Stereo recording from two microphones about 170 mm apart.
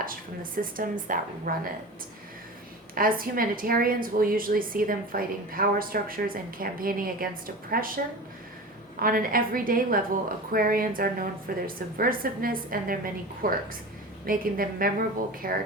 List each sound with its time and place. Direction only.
0.0 s a woman's voice: 55° right (ahead or behind)
2.9 s a woman's voice: 55° right (ahead or behind)